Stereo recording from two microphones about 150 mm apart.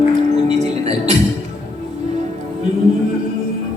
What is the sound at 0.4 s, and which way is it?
Music, 45° right (ahead or behind).